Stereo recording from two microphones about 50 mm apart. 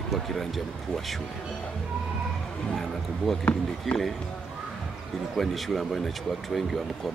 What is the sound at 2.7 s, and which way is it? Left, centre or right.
Speech, centre.